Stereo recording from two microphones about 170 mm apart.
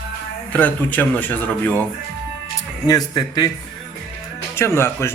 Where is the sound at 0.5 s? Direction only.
10° left (ahead or behind).